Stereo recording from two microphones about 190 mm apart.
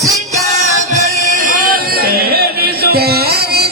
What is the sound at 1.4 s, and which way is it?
Music, 45° right (ahead or behind).